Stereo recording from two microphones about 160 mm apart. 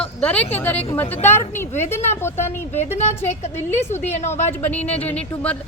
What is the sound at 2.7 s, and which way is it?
Speech, 45° left (ahead or behind).